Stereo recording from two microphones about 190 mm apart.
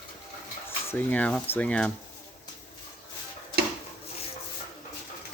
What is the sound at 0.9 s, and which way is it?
Speech, 10° left (ahead or behind).